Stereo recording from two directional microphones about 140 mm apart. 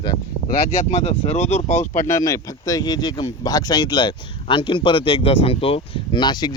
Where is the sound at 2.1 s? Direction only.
25° left (ahead or behind).